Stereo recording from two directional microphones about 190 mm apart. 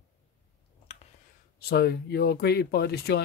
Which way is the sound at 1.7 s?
55° left (ahead or behind).